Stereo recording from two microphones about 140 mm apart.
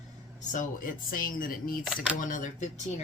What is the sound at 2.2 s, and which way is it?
Speech, 65° left (ahead or behind).